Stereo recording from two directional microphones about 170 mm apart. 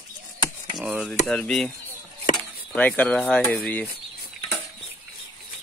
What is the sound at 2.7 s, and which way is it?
Speech, 10° left (ahead or behind).